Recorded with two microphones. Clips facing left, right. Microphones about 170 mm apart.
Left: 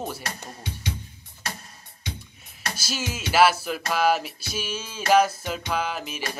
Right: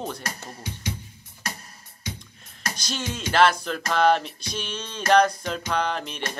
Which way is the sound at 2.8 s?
5° left (ahead or behind).